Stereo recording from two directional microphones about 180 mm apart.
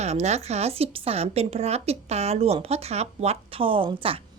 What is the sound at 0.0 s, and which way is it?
A woman's voice, 40° right (ahead or behind).